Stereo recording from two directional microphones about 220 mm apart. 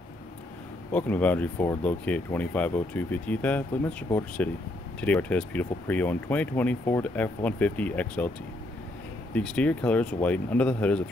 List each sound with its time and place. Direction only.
0.9 s speech: 5° left (ahead or behind)
9.3 s speech: 5° left (ahead or behind)